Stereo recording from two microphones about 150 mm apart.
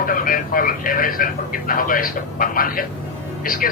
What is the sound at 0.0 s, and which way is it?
A man's voice, 65° left (ahead or behind).